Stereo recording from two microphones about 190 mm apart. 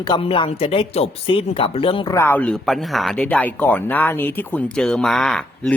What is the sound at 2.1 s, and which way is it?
Speech, 10° left (ahead or behind).